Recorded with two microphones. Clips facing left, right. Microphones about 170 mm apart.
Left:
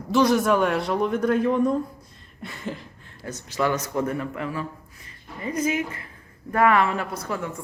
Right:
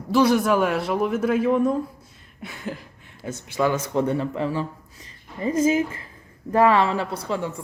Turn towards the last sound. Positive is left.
turn(degrees=-25)  # may be behind; listen again after turning